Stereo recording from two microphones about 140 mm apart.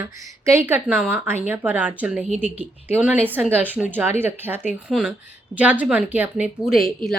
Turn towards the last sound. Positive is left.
turn(degrees=0)  # may be behind; listen again after turning